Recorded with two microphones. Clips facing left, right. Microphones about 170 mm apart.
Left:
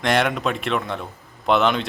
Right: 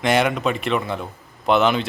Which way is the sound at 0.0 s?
Centre (ahead or behind).